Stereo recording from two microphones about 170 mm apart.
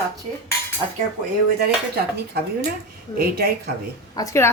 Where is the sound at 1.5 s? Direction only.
70° right (ahead or behind).